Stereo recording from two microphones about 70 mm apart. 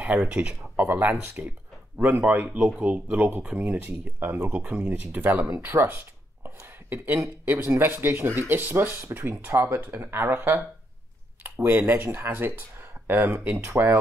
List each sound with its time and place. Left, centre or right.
0.0 s speech: centre
0.7 s speech: right